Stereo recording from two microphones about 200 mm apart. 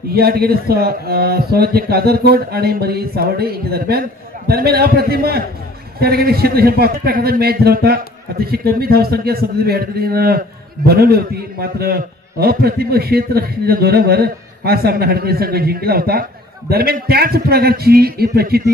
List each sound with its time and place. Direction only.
0.1 s a man's voice: 50° right (ahead or behind)